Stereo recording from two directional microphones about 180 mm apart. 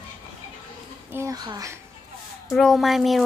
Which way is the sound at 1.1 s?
15° right (ahead or behind).